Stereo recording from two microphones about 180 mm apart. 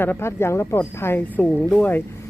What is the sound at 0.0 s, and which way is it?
Speech, 10° left (ahead or behind).